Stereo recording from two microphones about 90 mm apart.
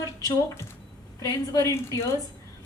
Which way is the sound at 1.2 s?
40° left (ahead or behind).